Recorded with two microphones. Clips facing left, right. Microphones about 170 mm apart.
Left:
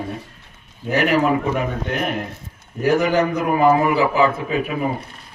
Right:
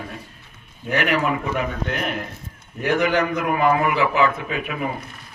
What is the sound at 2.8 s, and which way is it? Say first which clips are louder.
A man's voice: left 3 dB; 35° left (ahead or behind).